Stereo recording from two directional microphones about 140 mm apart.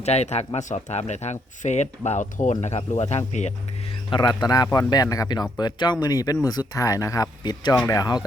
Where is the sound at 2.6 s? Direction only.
50° left (ahead or behind).